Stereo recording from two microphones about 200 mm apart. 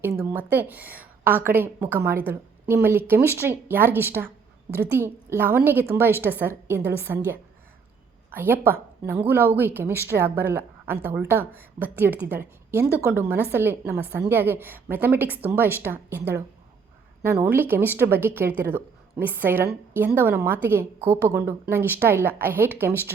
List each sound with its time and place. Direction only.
0.0 s a woman's voice: 10° right (ahead or behind)
8.3 s a woman's voice: 10° right (ahead or behind)
17.4 s a woman's voice: 10° right (ahead or behind)